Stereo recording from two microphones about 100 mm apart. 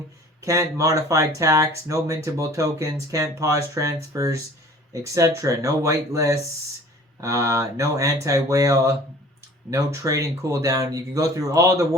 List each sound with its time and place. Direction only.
0.4 s speech: 35° right (ahead or behind)